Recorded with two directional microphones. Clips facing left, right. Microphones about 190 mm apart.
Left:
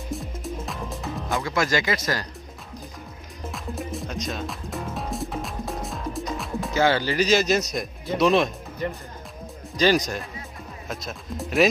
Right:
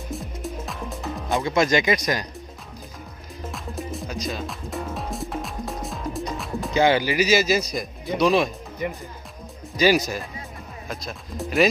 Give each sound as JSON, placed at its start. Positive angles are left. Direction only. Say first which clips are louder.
{"t": 0.1, "sound": "music", "louder": "even", "side_deg": 0}
{"t": 1.3, "sound": "speech", "louder": "right 4 dB", "side_deg": -20}
{"t": 3.5, "sound": "music", "louder": "left 1 dB", "side_deg": 0}
{"t": 6.7, "sound": "speech", "louder": "right 2 dB", "side_deg": -15}